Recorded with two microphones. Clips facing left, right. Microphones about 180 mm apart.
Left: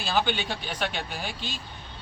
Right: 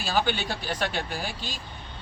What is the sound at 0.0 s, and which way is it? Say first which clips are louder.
Speech: even; 5° right (ahead or behind).